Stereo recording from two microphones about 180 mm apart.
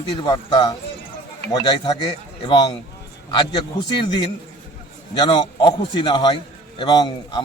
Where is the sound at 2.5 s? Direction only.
25° left (ahead or behind).